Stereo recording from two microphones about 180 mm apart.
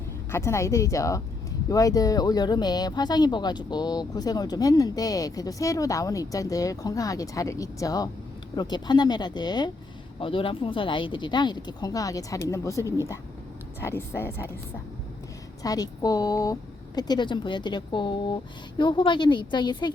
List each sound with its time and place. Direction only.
0.3 s speech: 15° left (ahead or behind)
13.8 s speech: 15° left (ahead or behind)
15.6 s speech: 20° left (ahead or behind)